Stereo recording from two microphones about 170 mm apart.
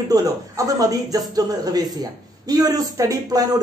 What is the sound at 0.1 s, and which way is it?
A man's voice, 20° right (ahead or behind).